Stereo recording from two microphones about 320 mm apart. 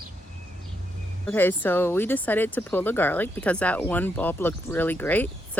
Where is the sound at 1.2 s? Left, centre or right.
Centre.